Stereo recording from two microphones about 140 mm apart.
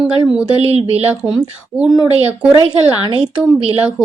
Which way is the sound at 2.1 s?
45° right (ahead or behind).